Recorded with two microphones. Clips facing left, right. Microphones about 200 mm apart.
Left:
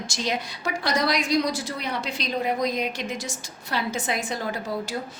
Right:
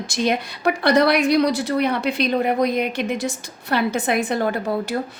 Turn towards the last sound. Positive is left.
turn(degrees=-60)  # may be behind; listen again after turning